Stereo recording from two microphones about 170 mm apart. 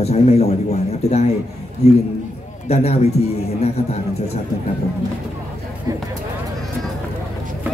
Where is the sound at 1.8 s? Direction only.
40° left (ahead or behind).